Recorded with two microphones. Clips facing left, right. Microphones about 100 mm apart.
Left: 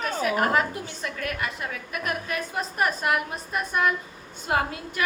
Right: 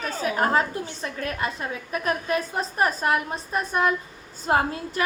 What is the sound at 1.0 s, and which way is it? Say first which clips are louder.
A woman's voice: right 1 dB; 30° right (ahead or behind).